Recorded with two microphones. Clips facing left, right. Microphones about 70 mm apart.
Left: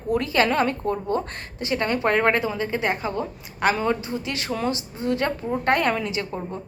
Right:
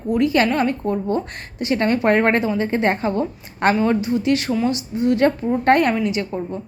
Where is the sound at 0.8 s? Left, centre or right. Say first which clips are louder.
Right 3 dB; right.